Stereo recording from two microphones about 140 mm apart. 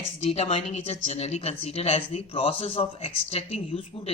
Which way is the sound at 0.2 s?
45° left (ahead or behind).